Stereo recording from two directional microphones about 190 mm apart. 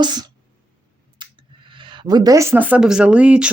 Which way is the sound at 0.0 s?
20° right (ahead or behind).